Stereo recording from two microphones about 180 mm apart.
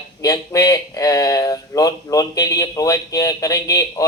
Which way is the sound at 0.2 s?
20° left (ahead or behind).